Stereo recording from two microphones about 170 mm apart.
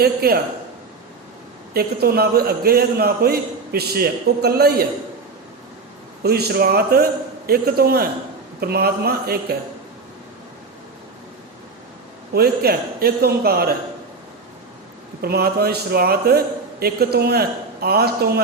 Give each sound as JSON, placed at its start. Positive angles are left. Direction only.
{"t": 0.0, "sound": "a man's voice", "side_deg": -65}
{"t": 1.7, "sound": "a man's voice", "side_deg": -65}
{"t": 6.2, "sound": "a man's voice", "side_deg": -70}
{"t": 12.3, "sound": "a man's voice", "side_deg": -65}
{"t": 15.2, "sound": "a man's voice", "side_deg": -65}